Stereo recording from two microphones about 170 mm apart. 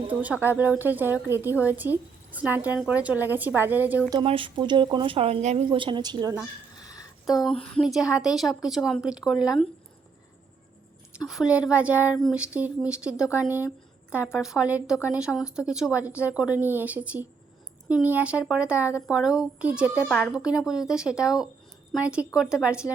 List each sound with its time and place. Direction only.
0.1 s a woman's voice: 10° right (ahead or behind)
4.1 s speech: 30° right (ahead or behind)
5.6 s a woman's voice: 30° right (ahead or behind)
6.7 s a sound: 20° left (ahead or behind)
7.3 s a woman's voice: centre (ahead or behind)
11.3 s a woman's voice: 5° right (ahead or behind)
20.1 s a woman's voice: 5° left (ahead or behind)